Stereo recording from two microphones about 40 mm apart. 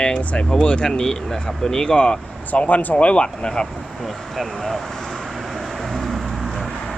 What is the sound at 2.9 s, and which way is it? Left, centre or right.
Speech, left.